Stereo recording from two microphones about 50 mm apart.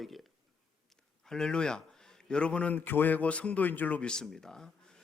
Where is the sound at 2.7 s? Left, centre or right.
Left.